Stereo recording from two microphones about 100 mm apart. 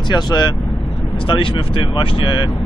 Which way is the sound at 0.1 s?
45° left (ahead or behind).